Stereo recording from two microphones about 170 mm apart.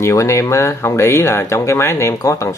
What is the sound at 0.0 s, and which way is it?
Speech, 15° left (ahead or behind).